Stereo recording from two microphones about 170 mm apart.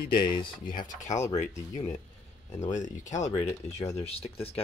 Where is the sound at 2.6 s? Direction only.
45° left (ahead or behind).